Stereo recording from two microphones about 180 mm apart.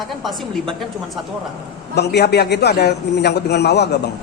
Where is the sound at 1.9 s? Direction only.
65° left (ahead or behind).